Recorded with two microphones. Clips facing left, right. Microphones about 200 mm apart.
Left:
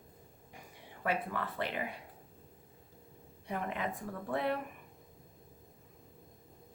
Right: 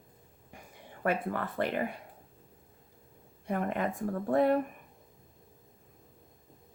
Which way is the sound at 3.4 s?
50° right (ahead or behind).